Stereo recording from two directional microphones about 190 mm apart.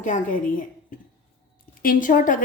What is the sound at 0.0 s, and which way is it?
Speech, 45° left (ahead or behind).